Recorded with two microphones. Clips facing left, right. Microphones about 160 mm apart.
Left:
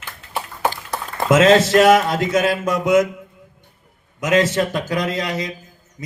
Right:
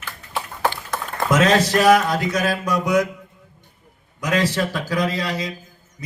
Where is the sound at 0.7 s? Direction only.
30° left (ahead or behind).